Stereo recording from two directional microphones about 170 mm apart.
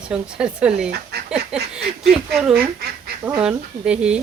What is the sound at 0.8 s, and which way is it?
Speech, 70° right (ahead or behind).